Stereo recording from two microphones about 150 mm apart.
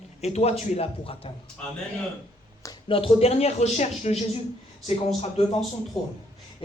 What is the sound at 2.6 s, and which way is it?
A man's voice, 30° left (ahead or behind).